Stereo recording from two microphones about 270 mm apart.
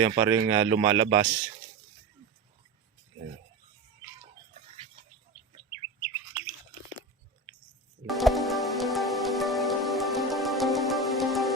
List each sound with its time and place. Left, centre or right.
0.0 s speech: centre
3.1 s speech: right
8.0 s music: centre